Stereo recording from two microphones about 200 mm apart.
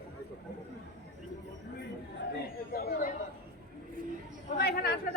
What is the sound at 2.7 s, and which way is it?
Chatter, 45° left (ahead or behind).